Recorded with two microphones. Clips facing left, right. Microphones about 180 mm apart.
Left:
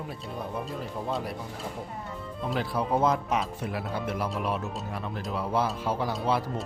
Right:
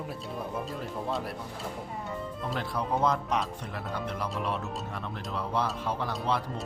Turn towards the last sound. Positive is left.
turn(degrees=5)  # may be behind; listen again after turning